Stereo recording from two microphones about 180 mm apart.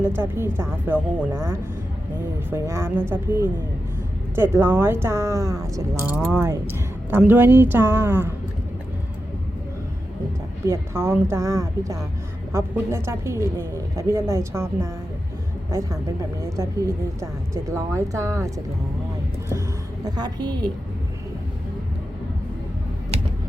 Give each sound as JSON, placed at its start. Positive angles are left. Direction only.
{"t": 0.0, "sound": "speech", "side_deg": -15}
{"t": 10.7, "sound": "speech", "side_deg": -15}
{"t": 20.1, "sound": "a woman's voice", "side_deg": -25}